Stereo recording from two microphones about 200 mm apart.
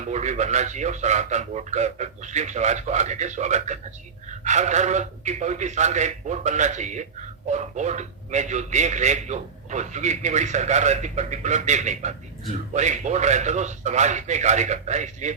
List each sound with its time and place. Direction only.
0.0 s a man's voice: 35° right (ahead or behind)